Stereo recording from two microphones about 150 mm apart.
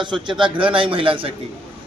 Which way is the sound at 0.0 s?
30° right (ahead or behind).